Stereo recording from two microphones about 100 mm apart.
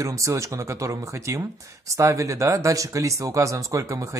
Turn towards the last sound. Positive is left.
turn(degrees=-30)  # may be behind; listen again after turning